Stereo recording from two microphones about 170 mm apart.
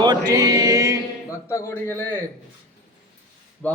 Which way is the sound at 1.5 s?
15° left (ahead or behind).